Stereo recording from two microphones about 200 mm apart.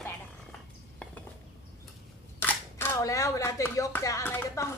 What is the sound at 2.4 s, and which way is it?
Speech, 10° left (ahead or behind).